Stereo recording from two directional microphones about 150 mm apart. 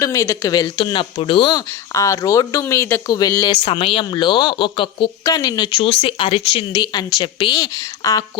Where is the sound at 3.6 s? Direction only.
35° left (ahead or behind).